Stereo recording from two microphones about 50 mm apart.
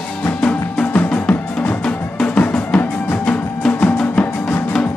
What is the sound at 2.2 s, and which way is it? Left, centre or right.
Drum, left.